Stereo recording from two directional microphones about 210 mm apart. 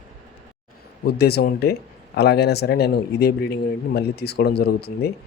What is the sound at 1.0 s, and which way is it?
Speech, 50° left (ahead or behind).